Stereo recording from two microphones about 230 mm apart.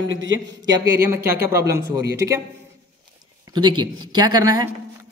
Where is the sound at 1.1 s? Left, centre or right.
Centre.